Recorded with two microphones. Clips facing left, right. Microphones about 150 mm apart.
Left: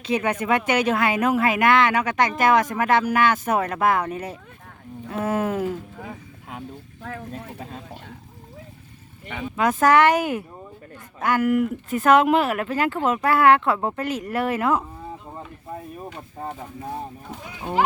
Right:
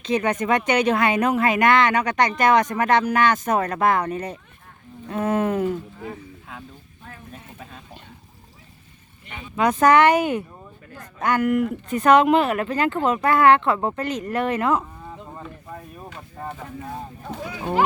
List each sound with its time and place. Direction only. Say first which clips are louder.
0.0 s speech: right 1 dB; 10° left (ahead or behind)
7.0 s speech: left 8 dB; 90° left
9.6 s speech: right 1 dB; centre (ahead or behind)